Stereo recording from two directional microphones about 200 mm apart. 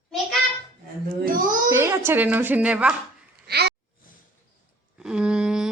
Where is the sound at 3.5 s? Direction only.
55° right (ahead or behind).